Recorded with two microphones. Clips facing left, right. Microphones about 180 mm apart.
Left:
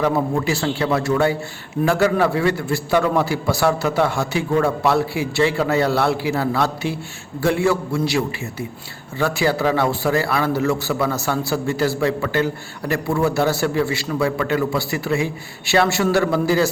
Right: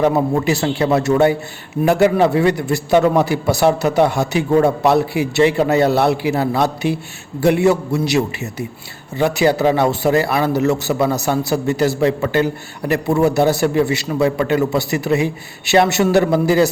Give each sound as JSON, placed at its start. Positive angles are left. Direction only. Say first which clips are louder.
{"t": 0.0, "sound": "a man's voice", "louder": "right 4 dB", "side_deg": -20}